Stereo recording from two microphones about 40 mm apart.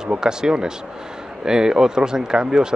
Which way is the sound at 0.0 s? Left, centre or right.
Centre.